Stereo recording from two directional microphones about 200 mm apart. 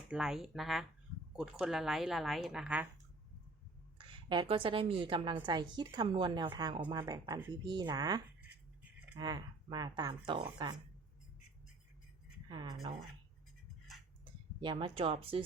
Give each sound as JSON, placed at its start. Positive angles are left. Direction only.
{"t": 0.1, "sound": "a woman's voice", "side_deg": 0}
{"t": 3.9, "sound": "speech", "side_deg": -25}
{"t": 12.5, "sound": "speech", "side_deg": -20}
{"t": 14.6, "sound": "speech", "side_deg": -25}